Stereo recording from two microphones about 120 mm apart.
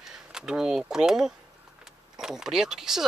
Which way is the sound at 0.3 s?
5° right (ahead or behind).